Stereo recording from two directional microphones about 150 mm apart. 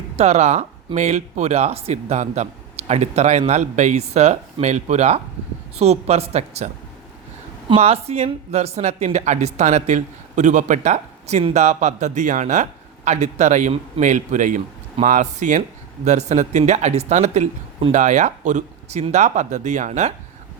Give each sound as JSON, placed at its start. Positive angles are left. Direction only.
{"t": 0.2, "sound": "a woman's voice", "side_deg": -45}
{"t": 7.7, "sound": "a woman's voice", "side_deg": -45}